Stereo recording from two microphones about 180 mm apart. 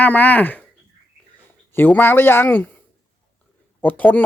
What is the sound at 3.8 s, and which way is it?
Speech, 10° left (ahead or behind).